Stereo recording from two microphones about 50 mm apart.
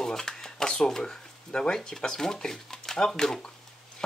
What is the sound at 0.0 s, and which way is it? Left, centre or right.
Speech, centre.